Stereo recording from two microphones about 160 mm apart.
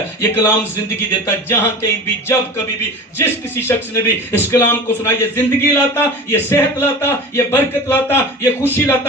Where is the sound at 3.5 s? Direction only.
15° left (ahead or behind).